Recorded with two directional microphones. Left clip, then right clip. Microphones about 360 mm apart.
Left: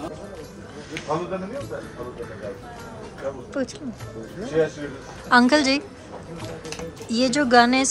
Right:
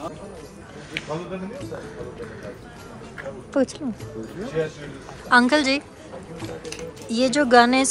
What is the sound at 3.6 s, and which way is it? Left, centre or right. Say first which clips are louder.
Speech: right 7 dB; centre.